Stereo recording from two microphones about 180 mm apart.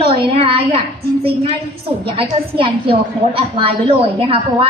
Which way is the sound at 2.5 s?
30° right (ahead or behind).